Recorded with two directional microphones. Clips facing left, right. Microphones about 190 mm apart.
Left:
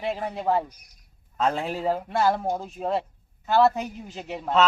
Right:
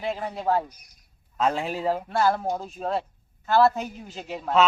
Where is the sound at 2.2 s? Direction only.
20° left (ahead or behind).